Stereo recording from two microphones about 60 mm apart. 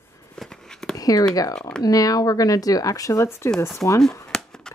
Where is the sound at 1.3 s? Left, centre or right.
Left.